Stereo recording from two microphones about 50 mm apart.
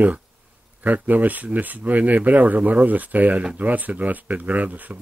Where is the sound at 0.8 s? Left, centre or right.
Right.